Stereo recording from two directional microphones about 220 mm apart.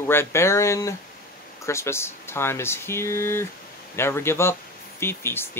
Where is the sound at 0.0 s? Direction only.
10° left (ahead or behind).